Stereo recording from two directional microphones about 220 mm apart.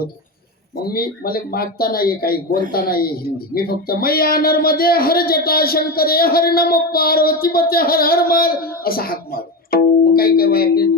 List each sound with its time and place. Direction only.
0.9 s speech: 45° left (ahead or behind)